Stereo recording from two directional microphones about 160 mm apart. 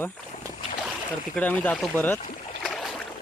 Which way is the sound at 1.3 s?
10° left (ahead or behind).